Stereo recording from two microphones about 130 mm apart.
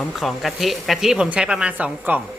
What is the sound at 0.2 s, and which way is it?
Speech, centre (ahead or behind).